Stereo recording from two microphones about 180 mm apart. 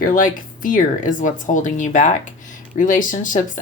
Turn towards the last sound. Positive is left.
turn(degrees=45)  # may be behind; listen again after turning